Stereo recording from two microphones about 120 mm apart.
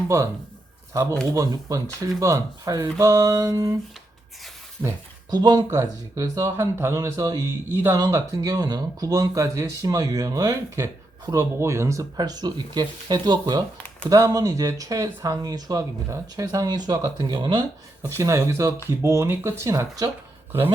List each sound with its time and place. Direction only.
1.3 s speech: 30° right (ahead or behind)
4.8 s speech: 30° right (ahead or behind)
7.9 s speech: 30° right (ahead or behind)
13.7 s a sound: 10° left (ahead or behind)
14.1 s speech: 30° right (ahead or behind)
18.2 s speech: 25° right (ahead or behind)